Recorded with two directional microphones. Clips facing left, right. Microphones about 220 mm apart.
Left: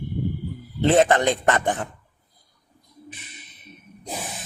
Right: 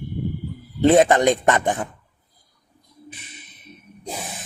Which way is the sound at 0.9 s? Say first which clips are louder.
Right 3 dB; 15° right (ahead or behind).